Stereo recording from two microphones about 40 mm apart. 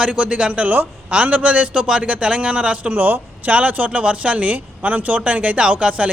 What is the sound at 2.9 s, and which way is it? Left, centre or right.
Speech, right.